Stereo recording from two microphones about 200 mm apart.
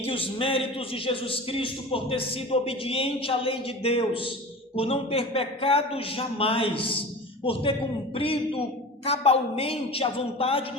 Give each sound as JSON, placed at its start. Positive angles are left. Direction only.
{"t": 0.0, "sound": "a man's voice", "side_deg": 25}